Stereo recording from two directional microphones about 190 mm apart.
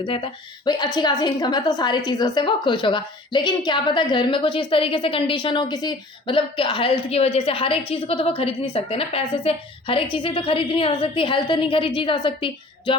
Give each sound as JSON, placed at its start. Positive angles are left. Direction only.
{"t": 0.0, "sound": "a woman's voice", "side_deg": 25}